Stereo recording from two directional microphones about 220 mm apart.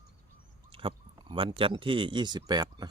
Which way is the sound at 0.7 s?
25° right (ahead or behind).